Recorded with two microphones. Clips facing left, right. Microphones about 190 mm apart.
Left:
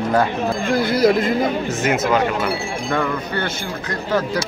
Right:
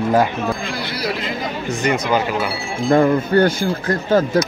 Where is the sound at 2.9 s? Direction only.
35° right (ahead or behind).